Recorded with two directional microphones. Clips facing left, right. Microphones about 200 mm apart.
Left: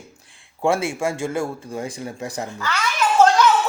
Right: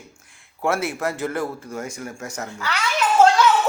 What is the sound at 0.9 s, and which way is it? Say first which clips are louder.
A man's voice: left 2 dB; 10° left (ahead or behind).